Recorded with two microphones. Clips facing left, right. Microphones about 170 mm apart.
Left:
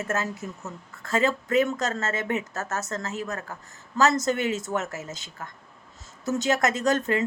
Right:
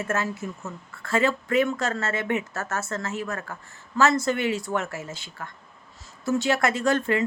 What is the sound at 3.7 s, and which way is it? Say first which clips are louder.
Speech: right 1 dB; 40° left (ahead or behind).